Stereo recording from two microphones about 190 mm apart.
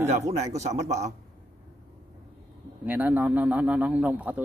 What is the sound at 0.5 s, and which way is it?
Speech, 35° right (ahead or behind).